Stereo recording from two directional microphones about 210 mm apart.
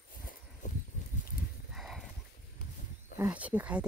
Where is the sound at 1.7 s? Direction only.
Centre (ahead or behind).